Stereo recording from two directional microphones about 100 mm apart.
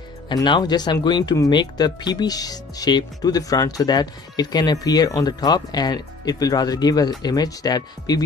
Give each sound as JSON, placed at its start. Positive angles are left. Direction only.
{"t": 0.3, "sound": "speech", "side_deg": 45}